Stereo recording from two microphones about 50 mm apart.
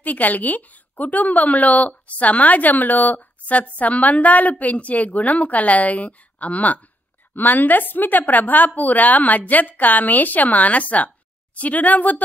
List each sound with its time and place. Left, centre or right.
0.0 s a woman's voice: left